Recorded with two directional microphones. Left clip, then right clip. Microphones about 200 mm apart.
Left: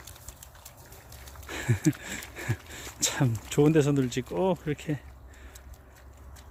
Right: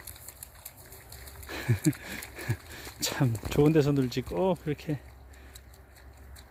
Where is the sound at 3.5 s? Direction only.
5° right (ahead or behind).